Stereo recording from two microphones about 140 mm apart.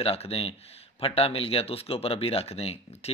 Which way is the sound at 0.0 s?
40° left (ahead or behind).